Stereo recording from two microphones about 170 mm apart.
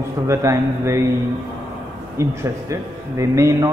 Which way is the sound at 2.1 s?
15° right (ahead or behind).